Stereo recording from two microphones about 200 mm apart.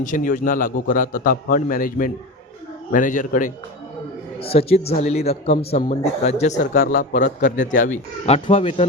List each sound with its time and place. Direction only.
0.0 s a man's voice: 40° left (ahead or behind)
4.4 s a man's voice: 30° left (ahead or behind)